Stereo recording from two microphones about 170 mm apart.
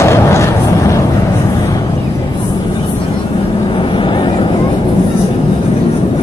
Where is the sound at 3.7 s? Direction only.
30° left (ahead or behind).